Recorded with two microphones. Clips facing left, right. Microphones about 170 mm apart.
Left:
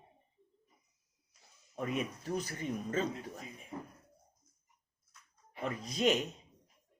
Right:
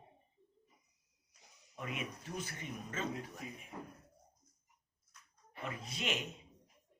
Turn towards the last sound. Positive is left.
turn(degrees=40)  # may be behind; listen again after turning